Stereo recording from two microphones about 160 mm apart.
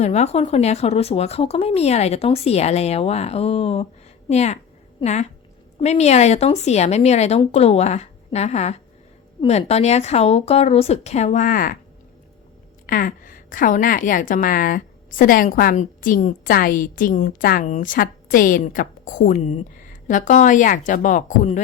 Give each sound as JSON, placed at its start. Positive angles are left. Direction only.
{"t": 0.0, "sound": "speech", "side_deg": 45}
{"t": 4.3, "sound": "a sound", "side_deg": 45}
{"t": 5.8, "sound": "speech", "side_deg": 45}
{"t": 12.8, "sound": "a woman's voice", "side_deg": 60}